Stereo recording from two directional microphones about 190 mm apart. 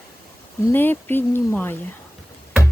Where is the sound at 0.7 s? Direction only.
10° left (ahead or behind).